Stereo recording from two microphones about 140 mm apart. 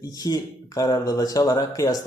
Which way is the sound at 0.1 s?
25° left (ahead or behind).